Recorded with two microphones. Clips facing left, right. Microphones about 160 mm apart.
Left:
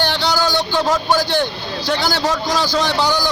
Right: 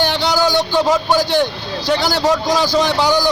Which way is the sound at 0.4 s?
10° right (ahead or behind).